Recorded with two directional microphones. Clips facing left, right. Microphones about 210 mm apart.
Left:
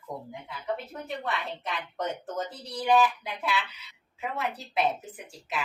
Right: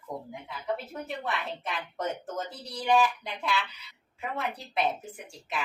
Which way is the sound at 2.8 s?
Centre (ahead or behind).